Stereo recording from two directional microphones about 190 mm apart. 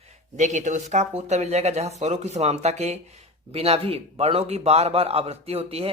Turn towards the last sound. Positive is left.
turn(degrees=-30)  # may be behind; listen again after turning